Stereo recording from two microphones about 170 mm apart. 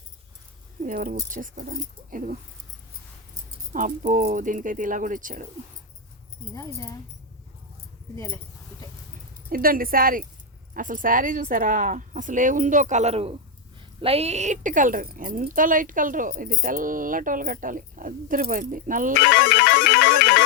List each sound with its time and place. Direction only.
0.8 s speech: 55° right (ahead or behind)
3.7 s speech: 50° right (ahead or behind)
9.5 s speech: 60° right (ahead or behind)
19.2 s music: 80° left